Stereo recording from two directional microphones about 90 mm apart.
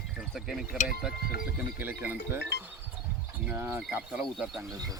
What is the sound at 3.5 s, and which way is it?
Speech, 25° right (ahead or behind).